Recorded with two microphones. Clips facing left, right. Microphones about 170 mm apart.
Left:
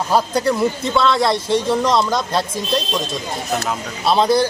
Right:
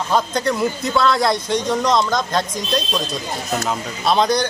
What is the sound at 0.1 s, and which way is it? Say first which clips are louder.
Speech: left 2 dB; 10° left (ahead or behind).